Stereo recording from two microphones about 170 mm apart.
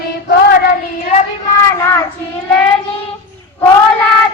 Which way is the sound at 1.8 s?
15° left (ahead or behind).